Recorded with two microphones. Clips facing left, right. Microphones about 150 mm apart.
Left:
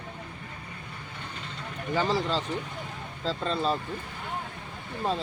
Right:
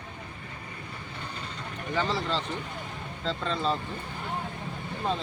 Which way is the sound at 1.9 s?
40° left (ahead or behind).